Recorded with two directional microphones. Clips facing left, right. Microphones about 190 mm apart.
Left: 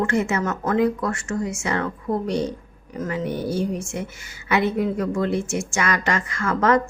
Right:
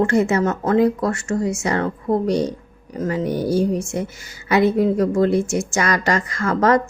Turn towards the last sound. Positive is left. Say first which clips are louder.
# right 3 dB
turn(degrees=-40)  # may be behind; listen again after turning